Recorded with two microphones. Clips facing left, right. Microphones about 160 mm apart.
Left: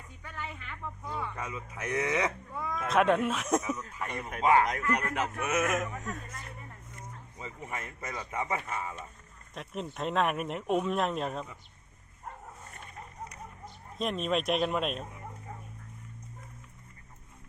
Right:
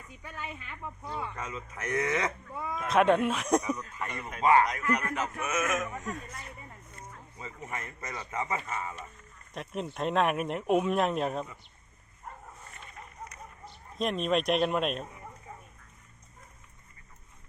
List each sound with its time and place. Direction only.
0.2 s speech: 15° right (ahead or behind)
1.4 s speech: 10° left (ahead or behind)
2.6 s speech: 5° right (ahead or behind)
5.4 s speech: 60° left (ahead or behind)
5.9 s speech: centre (ahead or behind)
6.9 s a sound: 15° left (ahead or behind)
7.6 s speech: 5° left (ahead or behind)
8.5 s speech: centre (ahead or behind)
14.0 s speech: centre (ahead or behind)